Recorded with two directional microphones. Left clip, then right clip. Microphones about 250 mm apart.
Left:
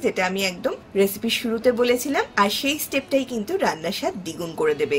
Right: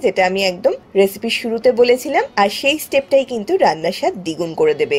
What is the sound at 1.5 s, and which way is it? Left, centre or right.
A woman's voice, right.